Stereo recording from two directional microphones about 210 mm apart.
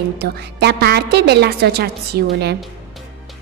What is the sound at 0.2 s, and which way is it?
A woman's voice, 50° right (ahead or behind).